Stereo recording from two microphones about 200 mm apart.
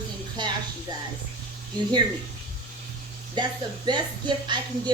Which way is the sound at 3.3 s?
20° right (ahead or behind).